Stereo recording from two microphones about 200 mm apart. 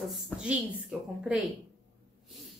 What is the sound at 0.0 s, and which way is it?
Speech, centre (ahead or behind).